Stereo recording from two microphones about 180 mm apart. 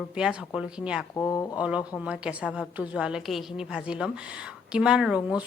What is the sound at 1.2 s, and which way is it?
Speech, 15° left (ahead or behind).